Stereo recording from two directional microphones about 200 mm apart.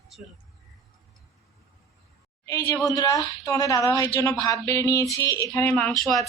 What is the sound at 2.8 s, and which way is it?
A woman's voice, 20° left (ahead or behind).